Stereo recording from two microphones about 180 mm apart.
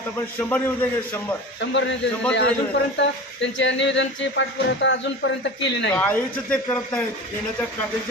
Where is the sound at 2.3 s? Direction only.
85° left.